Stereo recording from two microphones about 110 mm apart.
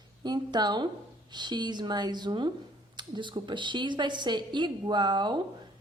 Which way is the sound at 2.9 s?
45° right (ahead or behind).